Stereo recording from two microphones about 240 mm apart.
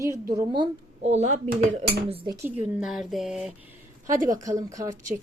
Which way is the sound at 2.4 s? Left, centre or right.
Centre.